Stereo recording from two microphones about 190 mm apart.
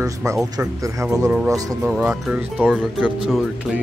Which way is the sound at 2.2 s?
5° right (ahead or behind).